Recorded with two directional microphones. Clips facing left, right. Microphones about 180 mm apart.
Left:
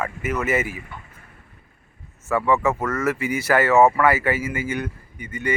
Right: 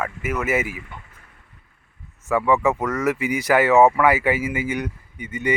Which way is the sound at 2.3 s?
15° right (ahead or behind).